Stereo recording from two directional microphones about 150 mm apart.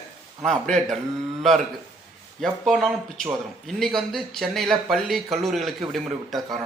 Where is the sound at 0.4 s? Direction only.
5° left (ahead or behind).